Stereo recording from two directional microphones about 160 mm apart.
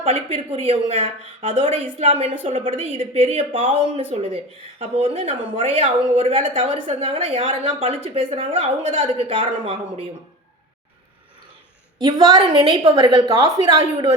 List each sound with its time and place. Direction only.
0.0 s a woman's voice: 40° right (ahead or behind)
11.9 s a woman's voice: 25° right (ahead or behind)